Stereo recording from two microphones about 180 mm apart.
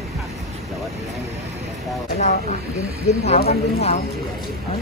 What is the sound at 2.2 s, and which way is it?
Speech, 45° left (ahead or behind).